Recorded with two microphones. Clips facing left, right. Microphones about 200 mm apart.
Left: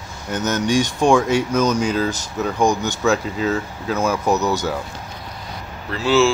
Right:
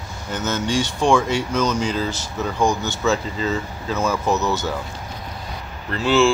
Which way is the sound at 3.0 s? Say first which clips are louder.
Left 2 dB; centre (ahead or behind).